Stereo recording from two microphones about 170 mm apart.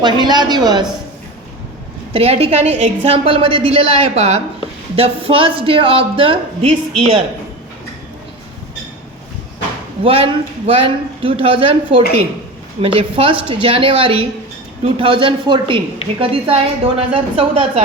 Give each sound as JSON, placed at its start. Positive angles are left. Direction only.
{"t": 0.0, "sound": "speech", "side_deg": -25}
{"t": 2.1, "sound": "speech", "side_deg": -35}
{"t": 10.0, "sound": "speech", "side_deg": -35}